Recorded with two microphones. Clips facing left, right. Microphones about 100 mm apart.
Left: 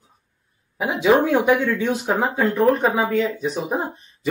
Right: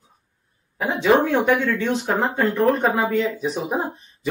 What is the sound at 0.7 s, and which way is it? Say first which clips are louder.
Speech: left 1 dB; 10° left (ahead or behind).